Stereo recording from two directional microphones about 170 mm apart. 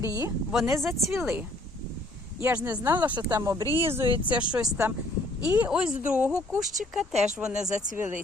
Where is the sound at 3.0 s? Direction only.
20° right (ahead or behind); by 7.7 s 5° right (ahead or behind).